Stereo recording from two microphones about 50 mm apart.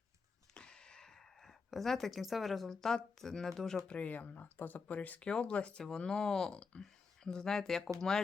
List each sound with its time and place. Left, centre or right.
0.5 s speech: centre
3.8 s speech: left
4.9 s speech: left; by 8.2 s centre